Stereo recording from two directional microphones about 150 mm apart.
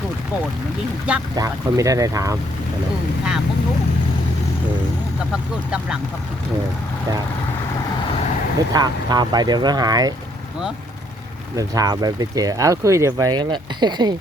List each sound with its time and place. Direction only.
1.4 s speech: 20° right (ahead or behind)
8.7 s speech: 25° right (ahead or behind)
11.5 s speech: 25° right (ahead or behind)